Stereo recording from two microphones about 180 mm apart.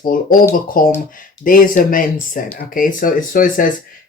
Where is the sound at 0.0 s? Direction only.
50° left (ahead or behind).